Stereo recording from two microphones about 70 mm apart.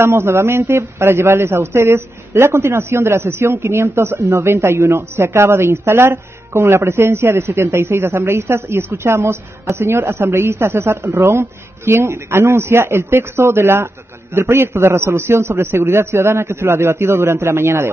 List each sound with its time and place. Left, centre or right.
0.0 s speech: right